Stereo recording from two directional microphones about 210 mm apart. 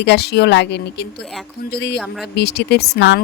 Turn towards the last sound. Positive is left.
turn(degrees=55)  # may be behind; listen again after turning